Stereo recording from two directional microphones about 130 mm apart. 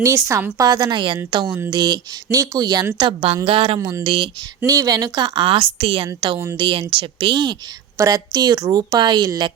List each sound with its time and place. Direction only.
0.6 s a woman's voice: 30° right (ahead or behind)
3.0 s a woman's voice: 40° right (ahead or behind)
3.8 s speech: 25° right (ahead or behind)
4.0 s a woman's voice: 40° right (ahead or behind)
4.6 s a woman's voice: 25° right (ahead or behind)